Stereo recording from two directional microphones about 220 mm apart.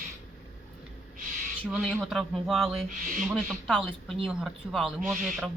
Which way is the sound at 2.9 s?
35° right (ahead or behind).